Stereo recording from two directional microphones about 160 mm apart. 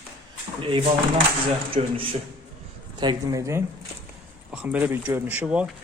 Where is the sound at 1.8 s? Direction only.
45° right (ahead or behind).